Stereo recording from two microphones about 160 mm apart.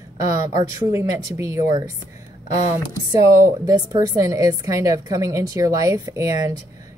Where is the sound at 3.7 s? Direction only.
25° right (ahead or behind).